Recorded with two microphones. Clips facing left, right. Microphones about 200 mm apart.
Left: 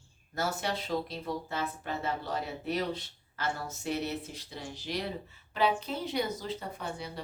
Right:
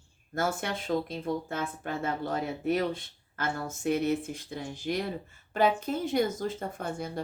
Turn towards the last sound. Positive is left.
turn(degrees=-50)  # may be behind; listen again after turning